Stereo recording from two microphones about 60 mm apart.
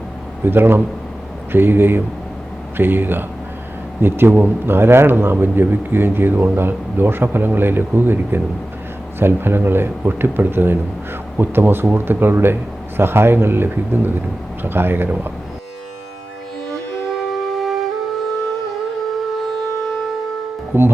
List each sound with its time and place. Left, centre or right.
0.4 s a man's voice: right
17.3 s flute: centre
20.7 s speech: right